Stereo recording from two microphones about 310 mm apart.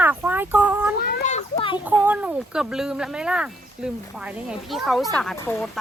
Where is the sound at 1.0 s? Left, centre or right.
Left.